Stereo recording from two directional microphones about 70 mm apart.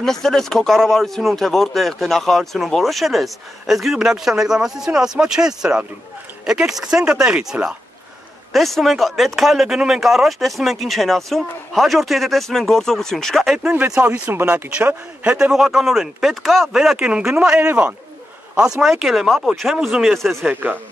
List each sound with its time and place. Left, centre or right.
0.0 s speech: centre
8.5 s speech: centre
14.4 s speech: right
15.3 s speech: centre
17.6 s speech: right
18.6 s speech: centre